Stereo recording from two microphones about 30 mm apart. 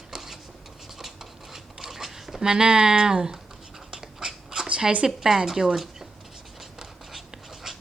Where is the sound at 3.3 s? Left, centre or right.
Centre.